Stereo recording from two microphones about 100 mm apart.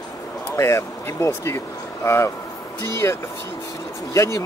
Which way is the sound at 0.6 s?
30° left (ahead or behind).